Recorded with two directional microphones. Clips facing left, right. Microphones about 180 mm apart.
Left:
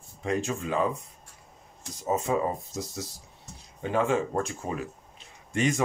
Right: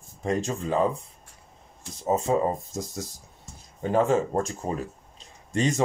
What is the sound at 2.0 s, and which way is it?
Speech, 35° right (ahead or behind).